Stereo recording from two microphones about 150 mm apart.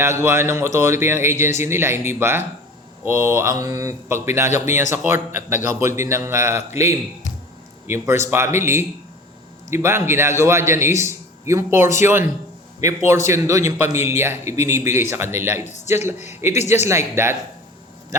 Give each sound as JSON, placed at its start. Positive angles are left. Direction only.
{"t": 0.0, "sound": "a man's voice", "side_deg": -15}
{"t": 7.9, "sound": "a man's voice", "side_deg": -20}
{"t": 16.1, "sound": "speech", "side_deg": 50}
{"t": 16.8, "sound": "a man's voice", "side_deg": -15}